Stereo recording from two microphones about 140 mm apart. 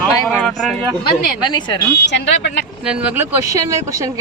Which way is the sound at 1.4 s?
30° left (ahead or behind).